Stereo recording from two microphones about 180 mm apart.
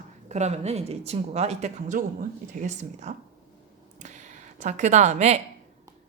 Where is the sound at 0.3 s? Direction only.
40° right (ahead or behind).